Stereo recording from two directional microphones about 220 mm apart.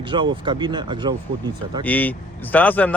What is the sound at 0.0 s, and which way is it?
Speech, 20° right (ahead or behind).